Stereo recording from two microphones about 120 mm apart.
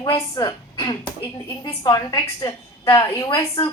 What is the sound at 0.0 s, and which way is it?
A woman's voice, 35° left (ahead or behind).